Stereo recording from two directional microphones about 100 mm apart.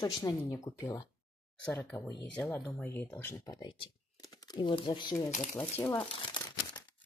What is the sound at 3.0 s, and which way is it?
Speech, 20° left (ahead or behind).